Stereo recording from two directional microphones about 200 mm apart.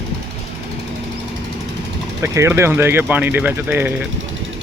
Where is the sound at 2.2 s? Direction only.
15° right (ahead or behind).